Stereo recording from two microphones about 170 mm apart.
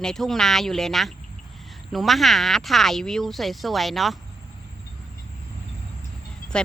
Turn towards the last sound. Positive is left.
turn(degrees=5)  # may be behind; listen again after turning